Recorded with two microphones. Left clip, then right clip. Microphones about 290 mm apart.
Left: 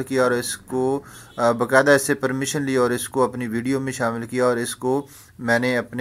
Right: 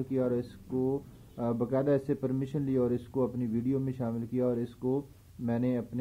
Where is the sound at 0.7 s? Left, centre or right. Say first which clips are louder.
Left 9 dB; left.